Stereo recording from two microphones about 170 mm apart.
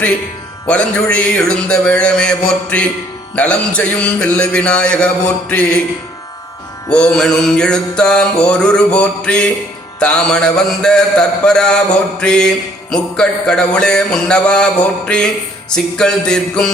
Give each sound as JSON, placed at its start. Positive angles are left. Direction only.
{"t": 0.7, "sound": "a man's voice", "side_deg": 5}
{"t": 6.9, "sound": "a man's voice", "side_deg": 5}